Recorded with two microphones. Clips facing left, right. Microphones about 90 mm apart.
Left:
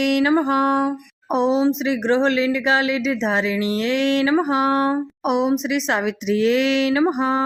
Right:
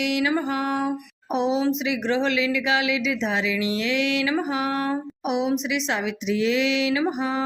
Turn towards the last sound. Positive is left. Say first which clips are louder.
# left 5 dB
turn(degrees=40)  # may be behind; listen again after turning